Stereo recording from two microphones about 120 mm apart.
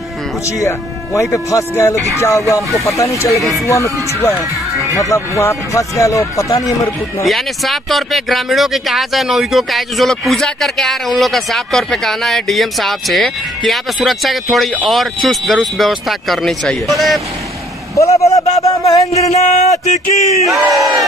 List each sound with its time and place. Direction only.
0.5 s a man's voice: 25° left (ahead or behind)
7.2 s speech: centre (ahead or behind)
18.0 s a man's voice: 25° left (ahead or behind)
19.1 s a sound: 65° left (ahead or behind)
20.4 s speech: centre (ahead or behind)